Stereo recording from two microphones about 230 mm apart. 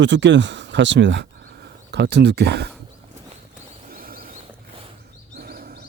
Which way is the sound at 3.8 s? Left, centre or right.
Right.